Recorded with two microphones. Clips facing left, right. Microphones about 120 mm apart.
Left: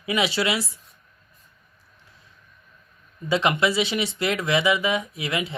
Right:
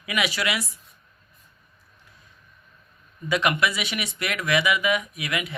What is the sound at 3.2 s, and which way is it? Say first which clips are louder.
Speech: left 2 dB; 25° left (ahead or behind).